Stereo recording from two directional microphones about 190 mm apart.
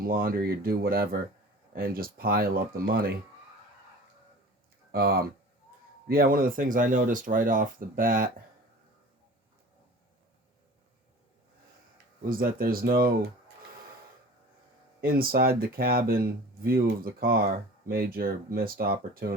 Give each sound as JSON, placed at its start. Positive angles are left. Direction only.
{"t": 0.0, "sound": "speech", "side_deg": -50}
{"t": 4.9, "sound": "speech", "side_deg": -55}
{"t": 12.2, "sound": "speech", "side_deg": -50}
{"t": 15.0, "sound": "speech", "side_deg": -50}